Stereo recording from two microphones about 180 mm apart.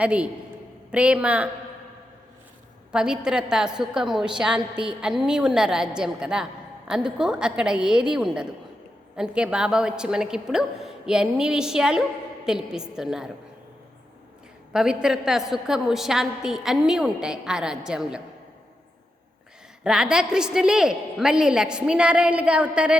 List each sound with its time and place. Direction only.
0.0 s a woman's voice: 5° right (ahead or behind)
2.9 s a woman's voice: 5° right (ahead or behind)
14.7 s a woman's voice: 5° right (ahead or behind)
19.8 s a woman's voice: 5° right (ahead or behind)